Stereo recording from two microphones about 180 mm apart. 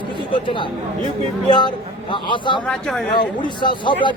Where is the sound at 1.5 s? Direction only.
25° left (ahead or behind).